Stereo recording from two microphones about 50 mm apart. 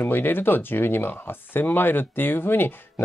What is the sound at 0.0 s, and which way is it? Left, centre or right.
Speech, left.